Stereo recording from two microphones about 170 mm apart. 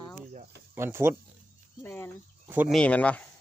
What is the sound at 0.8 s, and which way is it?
Speech, 15° right (ahead or behind).